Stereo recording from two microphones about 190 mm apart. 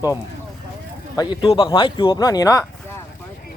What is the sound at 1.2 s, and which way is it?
Speech, 25° left (ahead or behind).